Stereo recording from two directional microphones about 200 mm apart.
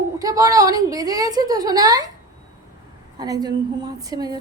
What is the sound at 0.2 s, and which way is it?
A woman's voice, 15° right (ahead or behind).